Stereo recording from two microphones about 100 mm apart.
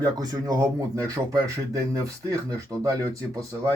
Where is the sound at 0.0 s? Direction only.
40° right (ahead or behind).